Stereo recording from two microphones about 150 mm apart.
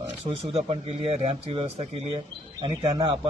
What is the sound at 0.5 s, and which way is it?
A man's voice, 40° right (ahead or behind).